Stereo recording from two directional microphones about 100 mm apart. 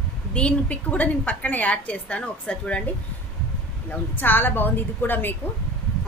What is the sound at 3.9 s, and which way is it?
Speech, 20° left (ahead or behind).